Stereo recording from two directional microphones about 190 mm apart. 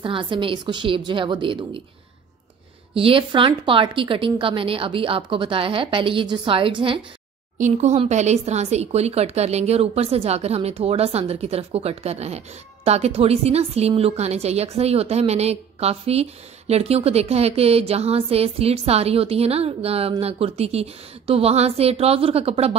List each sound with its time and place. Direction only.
0.0 s a woman's voice: 25° right (ahead or behind)
2.9 s a woman's voice: 30° right (ahead or behind)
7.5 s speech: 40° right (ahead or behind)